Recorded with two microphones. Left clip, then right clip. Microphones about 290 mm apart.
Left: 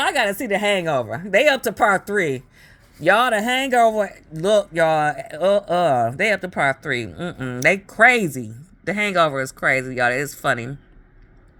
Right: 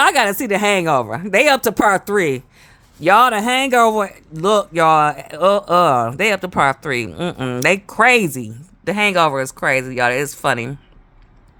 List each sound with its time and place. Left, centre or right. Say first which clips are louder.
0.0 s speech: right 6 dB; centre